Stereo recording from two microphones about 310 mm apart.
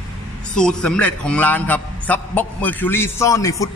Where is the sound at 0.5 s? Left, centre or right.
Centre.